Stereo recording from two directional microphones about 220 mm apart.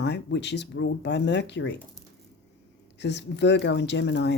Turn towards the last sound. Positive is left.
turn(degrees=50)  # may be behind; listen again after turning